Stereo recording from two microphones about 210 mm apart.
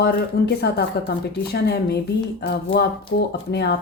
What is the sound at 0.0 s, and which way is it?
Speech, 50° left (ahead or behind).